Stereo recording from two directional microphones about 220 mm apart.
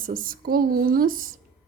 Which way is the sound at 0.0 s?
40° right (ahead or behind).